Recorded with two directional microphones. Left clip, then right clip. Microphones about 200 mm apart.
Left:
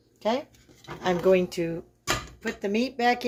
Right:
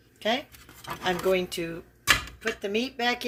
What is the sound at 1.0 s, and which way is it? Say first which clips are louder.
Speech: left 4 dB; 10° left (ahead or behind).